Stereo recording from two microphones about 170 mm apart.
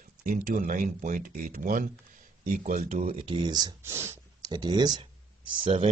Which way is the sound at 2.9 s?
35° right (ahead or behind).